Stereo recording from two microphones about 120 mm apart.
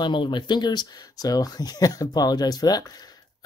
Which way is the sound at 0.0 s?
40° left (ahead or behind).